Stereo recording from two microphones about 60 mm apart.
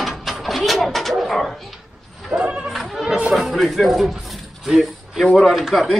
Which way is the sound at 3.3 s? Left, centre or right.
Centre.